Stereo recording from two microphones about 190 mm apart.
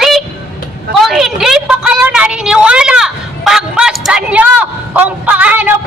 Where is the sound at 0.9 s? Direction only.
Centre (ahead or behind).